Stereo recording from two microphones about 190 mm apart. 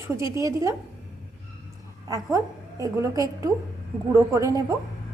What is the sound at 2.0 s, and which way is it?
A child's voice, 20° right (ahead or behind).